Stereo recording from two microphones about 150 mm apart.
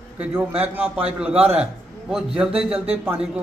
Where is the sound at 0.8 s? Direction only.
40° right (ahead or behind).